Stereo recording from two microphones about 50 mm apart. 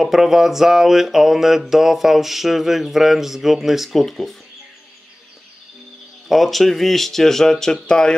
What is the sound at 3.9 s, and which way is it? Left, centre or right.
Speech, centre.